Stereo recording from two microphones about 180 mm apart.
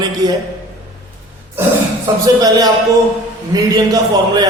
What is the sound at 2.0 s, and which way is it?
Speech, 20° right (ahead or behind).